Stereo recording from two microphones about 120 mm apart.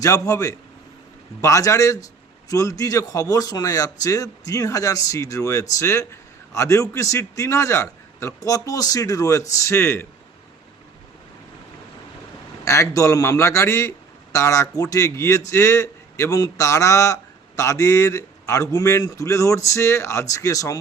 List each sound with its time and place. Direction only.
0.0 s a man's voice: 25° left (ahead or behind)
12.6 s a man's voice: 25° left (ahead or behind)